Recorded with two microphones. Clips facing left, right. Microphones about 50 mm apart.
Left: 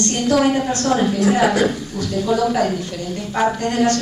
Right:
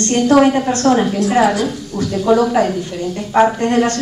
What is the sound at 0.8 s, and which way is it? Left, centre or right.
Speech, centre.